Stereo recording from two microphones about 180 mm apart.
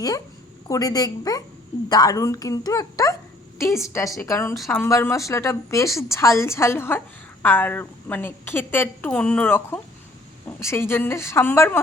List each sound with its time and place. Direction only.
0.7 s a woman's voice: 20° left (ahead or behind)
4.5 s a woman's voice: centre (ahead or behind)
4.8 s a woman's voice: 15° left (ahead or behind)